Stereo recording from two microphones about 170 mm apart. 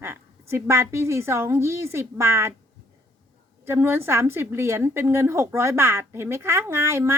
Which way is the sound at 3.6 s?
15° right (ahead or behind).